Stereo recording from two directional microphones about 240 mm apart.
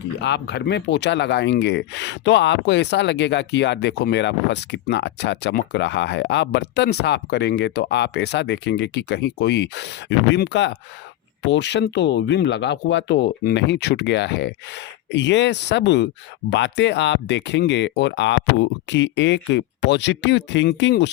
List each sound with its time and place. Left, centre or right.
0.2 s speech: left